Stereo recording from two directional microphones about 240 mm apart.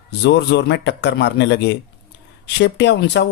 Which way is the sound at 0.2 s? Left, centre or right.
Left.